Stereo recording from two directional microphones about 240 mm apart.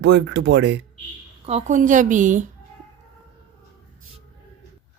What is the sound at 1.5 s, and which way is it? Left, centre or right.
Speech, right.